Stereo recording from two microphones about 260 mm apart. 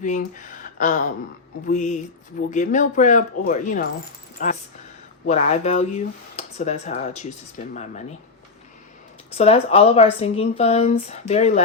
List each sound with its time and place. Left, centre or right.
0.0 s speech: left
9.3 s speech: left